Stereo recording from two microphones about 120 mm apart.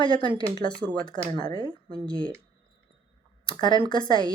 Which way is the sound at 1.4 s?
35° left (ahead or behind).